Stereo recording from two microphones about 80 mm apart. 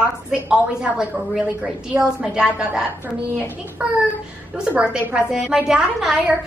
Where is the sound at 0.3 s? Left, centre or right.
Centre.